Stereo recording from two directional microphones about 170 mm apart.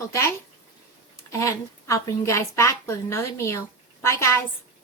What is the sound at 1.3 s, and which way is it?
A woman's voice, 20° left (ahead or behind).